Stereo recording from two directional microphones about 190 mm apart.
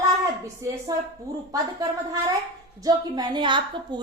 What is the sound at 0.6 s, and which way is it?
Speech, 15° right (ahead or behind).